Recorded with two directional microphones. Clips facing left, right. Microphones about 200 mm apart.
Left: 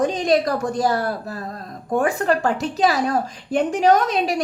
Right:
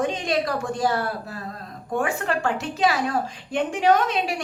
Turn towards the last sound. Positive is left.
turn(degrees=40)  # may be behind; listen again after turning